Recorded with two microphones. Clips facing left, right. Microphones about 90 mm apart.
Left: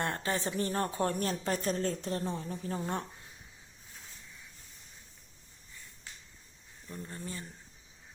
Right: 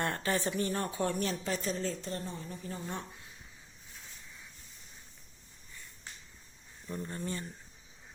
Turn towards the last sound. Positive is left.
turn(degrees=0)  # may be behind; listen again after turning